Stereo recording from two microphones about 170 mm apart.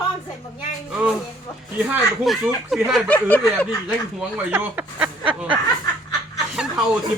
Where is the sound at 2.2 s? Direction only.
Centre (ahead or behind).